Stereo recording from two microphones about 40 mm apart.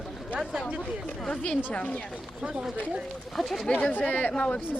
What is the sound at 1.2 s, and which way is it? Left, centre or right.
Speech, left.